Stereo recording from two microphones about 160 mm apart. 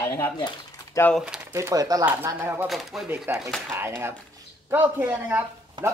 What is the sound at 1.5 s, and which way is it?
Speech, 20° right (ahead or behind).